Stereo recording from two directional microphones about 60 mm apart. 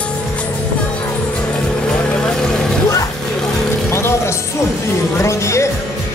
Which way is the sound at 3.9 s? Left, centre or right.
Left.